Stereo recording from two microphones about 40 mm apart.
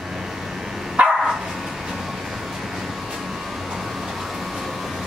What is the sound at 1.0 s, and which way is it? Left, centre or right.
Dog, right.